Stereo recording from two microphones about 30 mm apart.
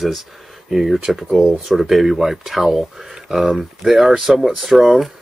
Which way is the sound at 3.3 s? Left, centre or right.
Centre.